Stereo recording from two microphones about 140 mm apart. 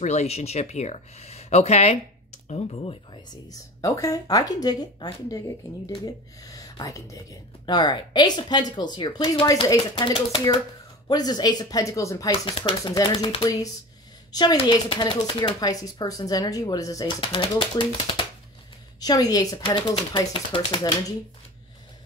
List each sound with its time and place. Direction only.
0.0 s speech: 50° left (ahead or behind)
3.4 s speech: 25° left (ahead or behind)
6.4 s speech: 25° left (ahead or behind)
17.2 s speech: 35° left (ahead or behind)